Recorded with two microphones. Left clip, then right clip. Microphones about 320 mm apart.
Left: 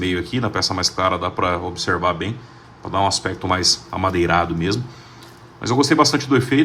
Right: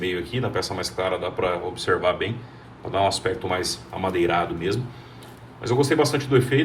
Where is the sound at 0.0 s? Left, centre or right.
Left.